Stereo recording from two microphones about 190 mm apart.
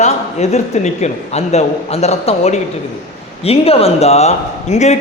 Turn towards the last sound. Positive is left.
turn(degrees=35)  # may be behind; listen again after turning